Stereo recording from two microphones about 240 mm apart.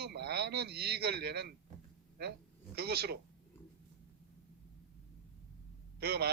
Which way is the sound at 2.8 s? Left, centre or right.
Right.